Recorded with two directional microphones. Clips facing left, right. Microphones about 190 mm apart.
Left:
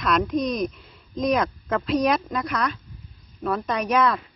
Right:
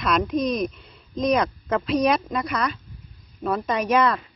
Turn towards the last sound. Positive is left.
turn(degrees=0)  # may be behind; listen again after turning